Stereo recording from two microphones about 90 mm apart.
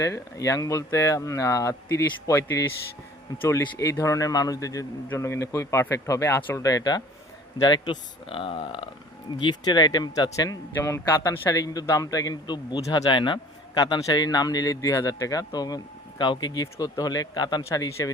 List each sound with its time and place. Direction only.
0.0 s speech: 35° left (ahead or behind)
3.4 s speech: 35° left (ahead or behind)
7.6 s speech: 60° left (ahead or behind); by 8.9 s 80° left
9.4 s a man's voice: 55° left (ahead or behind)
13.7 s a man's voice: 45° left (ahead or behind)
17.7 s speech: 35° left (ahead or behind)